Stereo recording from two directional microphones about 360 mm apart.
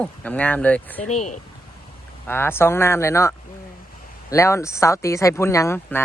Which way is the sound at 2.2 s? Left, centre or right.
Centre.